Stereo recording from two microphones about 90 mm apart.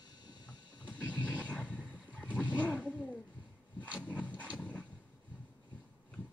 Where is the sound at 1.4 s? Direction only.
15° left (ahead or behind).